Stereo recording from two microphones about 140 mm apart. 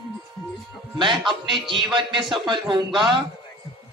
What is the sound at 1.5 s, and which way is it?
Speech, centre (ahead or behind).